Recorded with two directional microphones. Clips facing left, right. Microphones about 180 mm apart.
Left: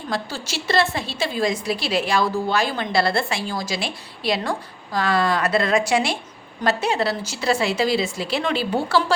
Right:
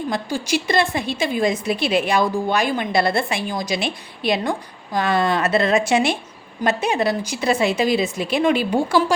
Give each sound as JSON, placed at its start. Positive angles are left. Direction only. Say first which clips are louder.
{"t": 0.1, "sound": "a woman's voice", "louder": "right 4 dB", "side_deg": -15}